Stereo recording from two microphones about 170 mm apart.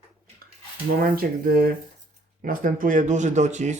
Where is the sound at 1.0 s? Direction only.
60° right (ahead or behind).